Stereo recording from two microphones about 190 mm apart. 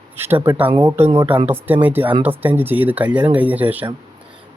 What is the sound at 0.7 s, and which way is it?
Speech, 25° right (ahead or behind).